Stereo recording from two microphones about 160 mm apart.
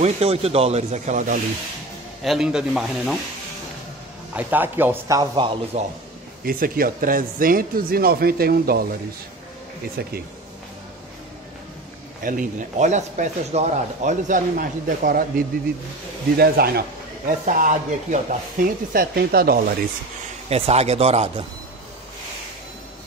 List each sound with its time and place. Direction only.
0.0 s speech: 40° right (ahead or behind)
2.2 s speech: 5° right (ahead or behind)
4.4 s speech: 10° right (ahead or behind); by 5.5 s 25° right (ahead or behind)
5.7 s a man's voice: 45° right (ahead or behind)
6.4 s speech: 65° right (ahead or behind)
10.0 s speech: 75° right (ahead or behind)
12.2 s speech: 60° right (ahead or behind)
16.3 s speech: 75° right (ahead or behind)
17.5 s speech: 55° right (ahead or behind); by 19.6 s 70° right (ahead or behind)
20.4 s speech: 40° right (ahead or behind)